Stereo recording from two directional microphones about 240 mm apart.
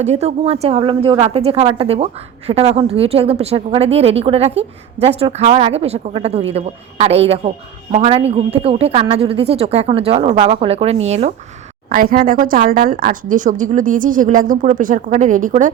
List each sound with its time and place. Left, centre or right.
0.0 s a woman's voice: right